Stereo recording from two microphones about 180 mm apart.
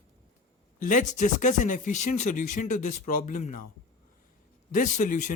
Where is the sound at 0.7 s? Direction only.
45° left (ahead or behind).